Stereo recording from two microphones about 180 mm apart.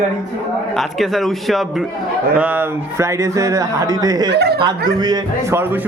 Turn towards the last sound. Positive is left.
turn(degrees=-20)  # may be behind; listen again after turning